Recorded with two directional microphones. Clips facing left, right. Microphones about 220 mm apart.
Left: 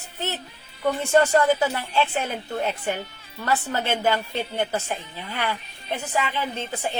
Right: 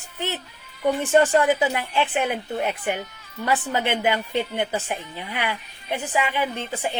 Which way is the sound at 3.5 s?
15° right (ahead or behind).